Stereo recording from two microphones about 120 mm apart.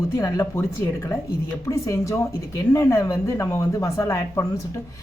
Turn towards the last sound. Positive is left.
turn(degrees=25)  # may be behind; listen again after turning